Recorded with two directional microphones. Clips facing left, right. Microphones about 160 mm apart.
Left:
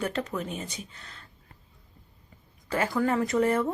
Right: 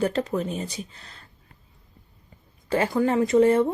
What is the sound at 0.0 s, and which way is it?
Speech, 35° right (ahead or behind).